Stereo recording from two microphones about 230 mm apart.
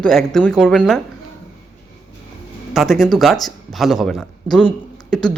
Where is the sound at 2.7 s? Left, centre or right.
Centre.